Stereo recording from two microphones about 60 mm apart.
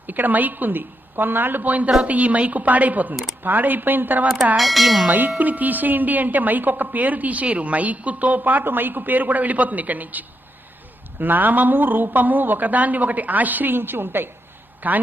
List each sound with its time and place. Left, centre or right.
0.1 s a woman's voice: right
4.5 s speech: centre
5.0 s a woman's voice: right